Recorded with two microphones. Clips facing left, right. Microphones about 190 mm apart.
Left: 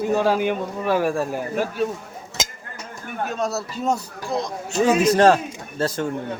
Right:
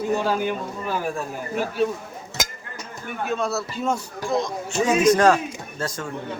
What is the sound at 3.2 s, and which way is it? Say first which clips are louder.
Speech: right 1 dB; 40° left (ahead or behind).